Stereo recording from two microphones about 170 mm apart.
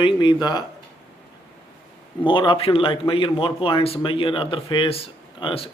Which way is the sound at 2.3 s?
30° left (ahead or behind).